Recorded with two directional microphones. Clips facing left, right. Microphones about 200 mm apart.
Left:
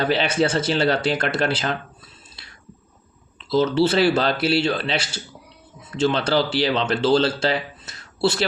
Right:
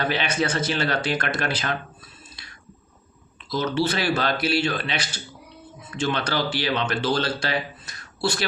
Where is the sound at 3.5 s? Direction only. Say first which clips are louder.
Left 6 dB; 30° left (ahead or behind).